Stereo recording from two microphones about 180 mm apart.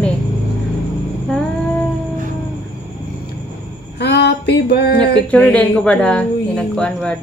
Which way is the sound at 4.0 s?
65° left (ahead or behind).